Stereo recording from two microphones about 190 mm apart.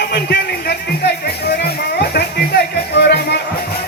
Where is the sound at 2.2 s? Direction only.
60° left (ahead or behind).